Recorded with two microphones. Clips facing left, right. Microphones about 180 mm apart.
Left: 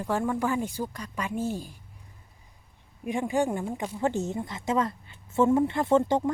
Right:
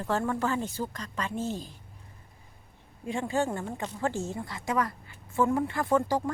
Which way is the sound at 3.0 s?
15° left (ahead or behind).